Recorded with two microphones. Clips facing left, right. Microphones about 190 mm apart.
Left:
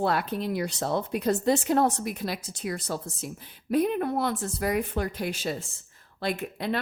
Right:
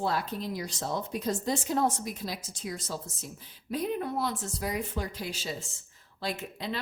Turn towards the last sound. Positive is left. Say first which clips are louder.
# left 6 dB
turn(degrees=60)  # may be behind; listen again after turning